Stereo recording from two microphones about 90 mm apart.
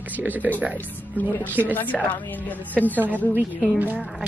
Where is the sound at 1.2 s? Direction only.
20° left (ahead or behind).